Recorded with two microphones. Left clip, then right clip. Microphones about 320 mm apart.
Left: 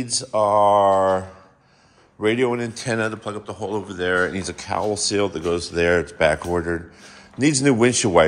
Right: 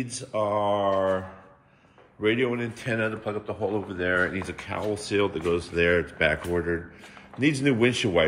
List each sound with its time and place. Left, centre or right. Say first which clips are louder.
0.0 s speech: left 8 dB; centre
2.2 s speech: left 5 dB; centre